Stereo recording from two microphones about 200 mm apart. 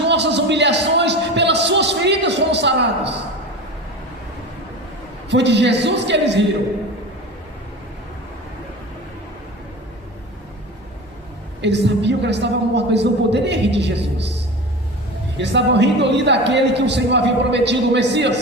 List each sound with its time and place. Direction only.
0.1 s a sound: 60° right (ahead or behind)
5.3 s a woman's voice: 60° right (ahead or behind)
11.6 s a woman's voice: 60° right (ahead or behind)
15.4 s a woman's voice: 60° right (ahead or behind)